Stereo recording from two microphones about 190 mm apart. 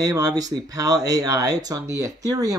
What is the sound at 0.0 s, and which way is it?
Speech, 20° right (ahead or behind).